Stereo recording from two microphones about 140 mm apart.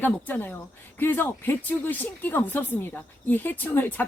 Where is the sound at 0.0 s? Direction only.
15° left (ahead or behind).